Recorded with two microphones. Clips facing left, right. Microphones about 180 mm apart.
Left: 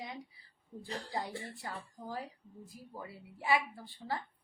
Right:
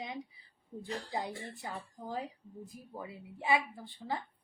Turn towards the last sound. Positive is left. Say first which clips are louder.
# right 1 dB
turn(degrees=-20)  # may be behind; listen again after turning